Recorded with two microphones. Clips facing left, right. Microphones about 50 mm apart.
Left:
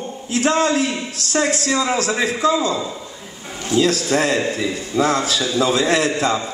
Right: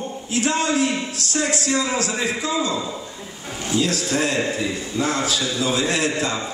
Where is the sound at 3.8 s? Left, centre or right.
Left.